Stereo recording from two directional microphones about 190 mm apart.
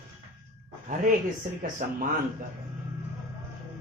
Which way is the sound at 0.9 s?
45° right (ahead or behind).